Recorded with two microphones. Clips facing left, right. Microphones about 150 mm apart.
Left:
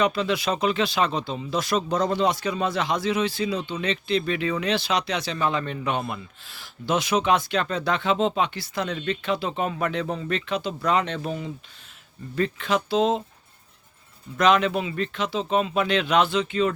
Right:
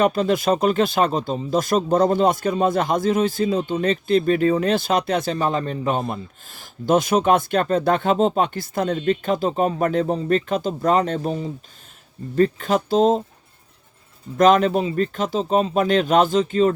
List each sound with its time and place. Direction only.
0.0 s speech: 45° right (ahead or behind)
14.3 s speech: 45° right (ahead or behind)